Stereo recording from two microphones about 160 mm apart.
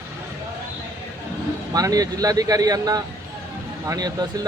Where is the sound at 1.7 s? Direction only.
20° right (ahead or behind).